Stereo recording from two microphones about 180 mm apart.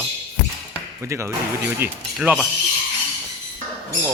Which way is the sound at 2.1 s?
Centre (ahead or behind).